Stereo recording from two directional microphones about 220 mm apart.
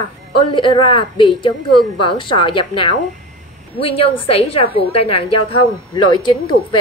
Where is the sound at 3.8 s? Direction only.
25° left (ahead or behind).